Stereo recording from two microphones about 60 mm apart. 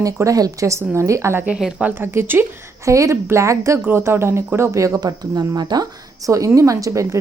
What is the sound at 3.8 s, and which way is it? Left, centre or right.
Speech, right.